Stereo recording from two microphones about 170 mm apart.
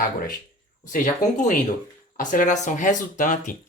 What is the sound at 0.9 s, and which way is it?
Speech, 50° left (ahead or behind).